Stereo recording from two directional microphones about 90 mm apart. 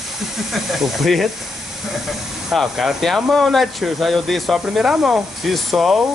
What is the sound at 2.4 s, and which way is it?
Speech, 5° right (ahead or behind).